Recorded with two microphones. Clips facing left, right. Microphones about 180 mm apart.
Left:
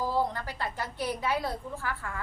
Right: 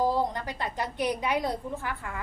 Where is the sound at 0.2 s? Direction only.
20° right (ahead or behind).